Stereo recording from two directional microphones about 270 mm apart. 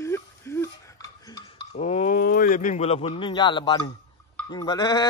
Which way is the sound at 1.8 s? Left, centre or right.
Left.